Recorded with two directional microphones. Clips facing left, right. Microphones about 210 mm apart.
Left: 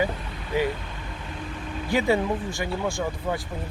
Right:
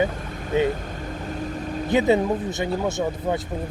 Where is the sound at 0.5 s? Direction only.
25° right (ahead or behind).